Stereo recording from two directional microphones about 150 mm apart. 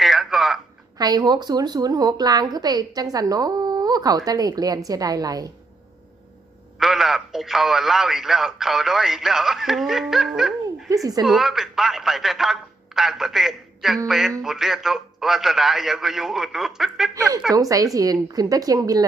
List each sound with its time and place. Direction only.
0.0 s telephone: centre (ahead or behind)
0.9 s a woman's voice: 25° right (ahead or behind)
6.7 s speech: centre (ahead or behind)
10.8 s a woman's voice: 25° right (ahead or behind)
11.3 s speech: centre (ahead or behind)
17.2 s a woman's voice: 25° right (ahead or behind)